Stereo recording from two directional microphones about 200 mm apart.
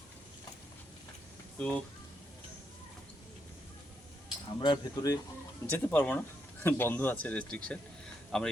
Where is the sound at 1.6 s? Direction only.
5° left (ahead or behind).